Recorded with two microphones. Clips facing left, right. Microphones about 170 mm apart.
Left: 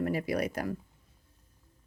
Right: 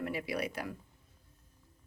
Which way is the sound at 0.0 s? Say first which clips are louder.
Left 6 dB; 45° left (ahead or behind).